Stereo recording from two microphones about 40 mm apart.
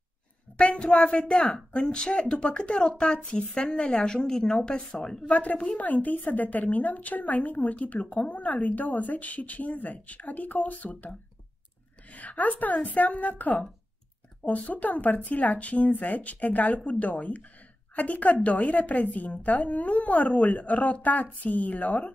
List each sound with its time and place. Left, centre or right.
0.7 s speech: centre
1.5 s speech: left; by 4.6 s centre
5.2 s a woman's voice: left
14.7 s a woman's voice: left